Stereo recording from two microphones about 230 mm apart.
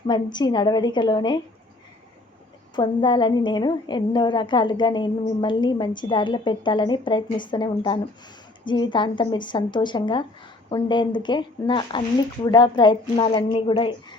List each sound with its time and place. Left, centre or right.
0.1 s a woman's voice: centre
2.7 s a woman's voice: centre